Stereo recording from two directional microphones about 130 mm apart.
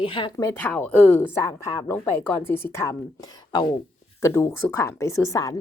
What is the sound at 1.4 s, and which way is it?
A woman's voice, 25° left (ahead or behind).